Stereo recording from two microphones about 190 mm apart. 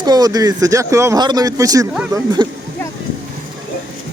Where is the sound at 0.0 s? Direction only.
20° right (ahead or behind).